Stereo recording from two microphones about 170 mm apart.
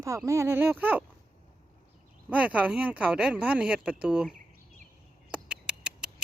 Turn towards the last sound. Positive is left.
turn(degrees=-5)  # may be behind; listen again after turning